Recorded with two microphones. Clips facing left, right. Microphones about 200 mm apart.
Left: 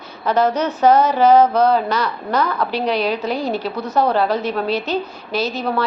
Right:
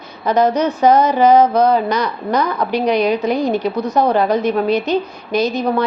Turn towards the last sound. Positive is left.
turn(degrees=-15)  # may be behind; listen again after turning